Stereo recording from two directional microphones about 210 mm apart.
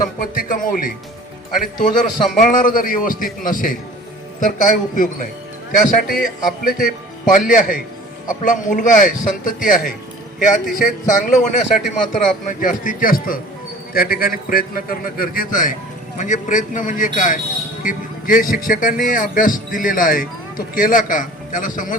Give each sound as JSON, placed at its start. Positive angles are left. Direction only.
{"t": 0.0, "sound": "a man's voice", "side_deg": 40}